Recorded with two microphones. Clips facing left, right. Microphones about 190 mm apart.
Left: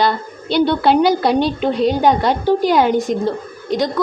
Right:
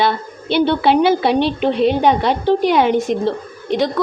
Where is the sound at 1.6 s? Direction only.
60° right (ahead or behind).